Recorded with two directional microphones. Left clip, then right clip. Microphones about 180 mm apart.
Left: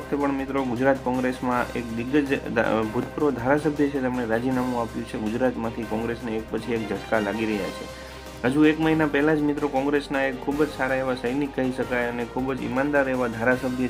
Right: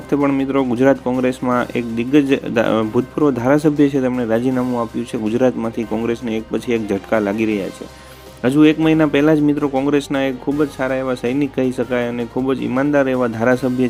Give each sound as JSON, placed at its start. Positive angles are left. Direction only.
{"t": 0.1, "sound": "speech", "side_deg": -40}